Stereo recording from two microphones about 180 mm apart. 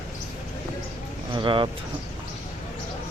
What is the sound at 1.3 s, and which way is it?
Speech, 25° right (ahead or behind).